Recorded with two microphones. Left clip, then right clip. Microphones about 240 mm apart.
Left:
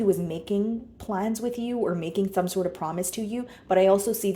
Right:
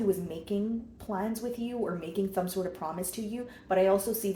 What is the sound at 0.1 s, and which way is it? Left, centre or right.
A woman's voice, left.